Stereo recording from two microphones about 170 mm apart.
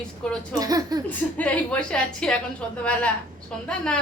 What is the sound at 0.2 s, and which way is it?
Speech, 5° left (ahead or behind).